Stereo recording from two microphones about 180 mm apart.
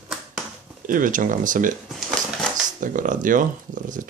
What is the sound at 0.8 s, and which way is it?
Speech, 50° right (ahead or behind).